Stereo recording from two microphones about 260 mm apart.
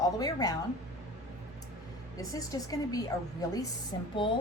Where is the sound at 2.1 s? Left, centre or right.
Centre.